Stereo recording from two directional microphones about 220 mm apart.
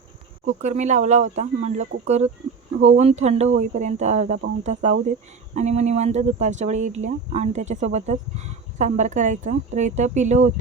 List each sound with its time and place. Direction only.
0.4 s speech: 30° right (ahead or behind)